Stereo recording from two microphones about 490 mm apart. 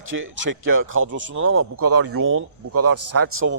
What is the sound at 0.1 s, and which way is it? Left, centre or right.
Speech, right.